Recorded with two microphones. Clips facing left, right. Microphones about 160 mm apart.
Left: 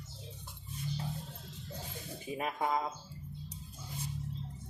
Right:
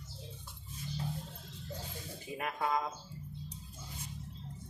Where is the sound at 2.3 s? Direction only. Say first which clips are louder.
Left 1 dB; 20° left (ahead or behind).